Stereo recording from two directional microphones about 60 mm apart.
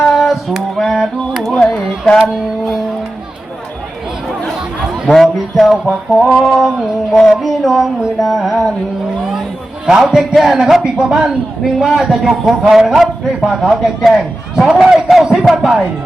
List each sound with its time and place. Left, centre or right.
0.0 s a sound: centre
0.8 s music: centre
1.5 s a sound: centre
2.1 s music: centre
5.1 s music: centre
6.1 s speech: centre
6.4 s music: centre
9.8 s music: centre
10.8 s speech: centre
14.0 s music: centre
14.8 s speech: centre